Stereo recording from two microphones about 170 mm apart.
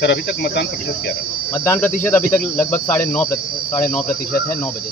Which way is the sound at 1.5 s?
15° left (ahead or behind).